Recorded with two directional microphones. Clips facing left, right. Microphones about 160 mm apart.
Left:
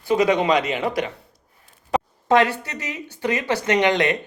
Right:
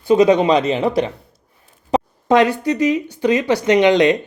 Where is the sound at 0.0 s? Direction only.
25° right (ahead or behind).